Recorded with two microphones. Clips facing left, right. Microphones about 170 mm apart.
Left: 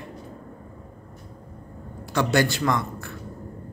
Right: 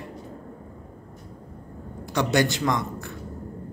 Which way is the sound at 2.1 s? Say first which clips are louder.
Even; 20° right (ahead or behind).